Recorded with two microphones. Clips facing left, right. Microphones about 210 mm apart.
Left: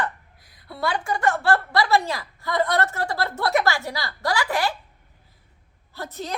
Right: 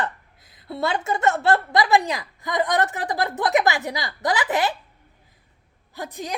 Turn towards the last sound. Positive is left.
turn(degrees=-15)  # may be behind; listen again after turning